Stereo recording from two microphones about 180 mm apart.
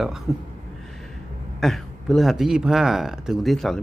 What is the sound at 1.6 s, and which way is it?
Speech, centre (ahead or behind).